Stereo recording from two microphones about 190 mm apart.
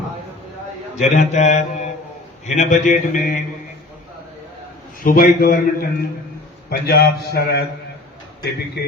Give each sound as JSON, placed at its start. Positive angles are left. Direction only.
{"t": 0.9, "sound": "mantra", "side_deg": 40}
{"t": 5.0, "sound": "a man's voice", "side_deg": 50}